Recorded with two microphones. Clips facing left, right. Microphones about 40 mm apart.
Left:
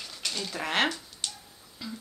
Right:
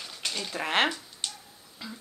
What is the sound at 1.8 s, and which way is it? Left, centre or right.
Music, centre.